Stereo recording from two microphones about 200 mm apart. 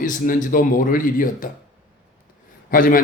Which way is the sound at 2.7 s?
45° left (ahead or behind).